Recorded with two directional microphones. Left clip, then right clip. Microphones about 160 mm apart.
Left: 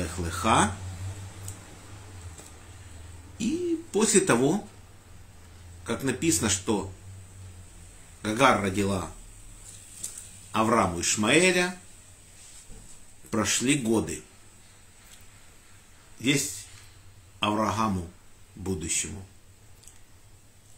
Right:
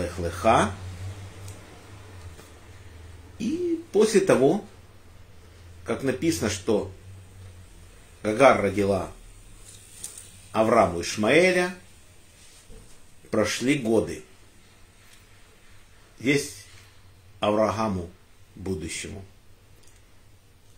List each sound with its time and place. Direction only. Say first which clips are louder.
0.0 s speech: right 5 dB; 15° left (ahead or behind)
3.5 s speech: right 5 dB; 15° left (ahead or behind)
5.9 s speech: right 2 dB; 15° left (ahead or behind)
8.2 s speech: right 4 dB; 15° left (ahead or behind)
9.7 s a sound: left 1 dB; 60° left (ahead or behind)
10.5 s speech: right 4 dB; 15° left (ahead or behind)
13.3 s speech: right 2 dB; 15° left (ahead or behind)
16.2 s speech: right 2 dB; 15° left (ahead or behind)